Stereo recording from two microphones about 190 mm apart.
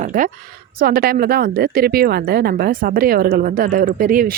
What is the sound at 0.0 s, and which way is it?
A woman's voice, 40° right (ahead or behind).